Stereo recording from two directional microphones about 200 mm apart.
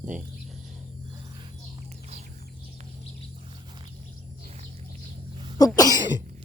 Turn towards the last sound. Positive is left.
turn(degrees=20)  # may be behind; listen again after turning